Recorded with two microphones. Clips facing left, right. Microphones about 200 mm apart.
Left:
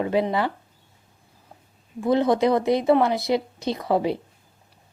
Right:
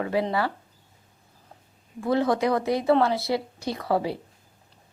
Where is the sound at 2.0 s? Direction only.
20° left (ahead or behind).